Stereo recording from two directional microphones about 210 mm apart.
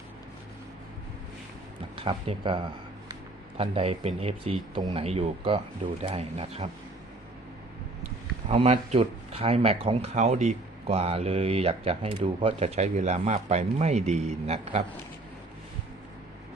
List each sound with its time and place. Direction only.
2.0 s speech: 25° right (ahead or behind)
8.4 s speech: 30° right (ahead or behind)